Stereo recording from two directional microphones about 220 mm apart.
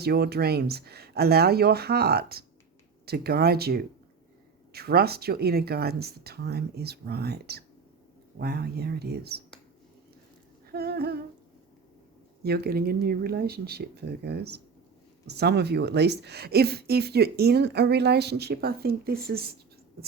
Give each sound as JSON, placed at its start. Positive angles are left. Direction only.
{"t": 0.0, "sound": "speech", "side_deg": -45}
{"t": 10.7, "sound": "speech", "side_deg": -45}
{"t": 12.4, "sound": "speech", "side_deg": -45}